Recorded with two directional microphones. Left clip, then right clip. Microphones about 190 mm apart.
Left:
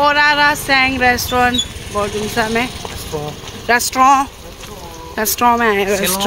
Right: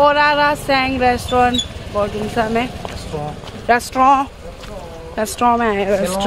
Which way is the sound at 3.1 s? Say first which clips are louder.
Left 2 dB; 45° left (ahead or behind).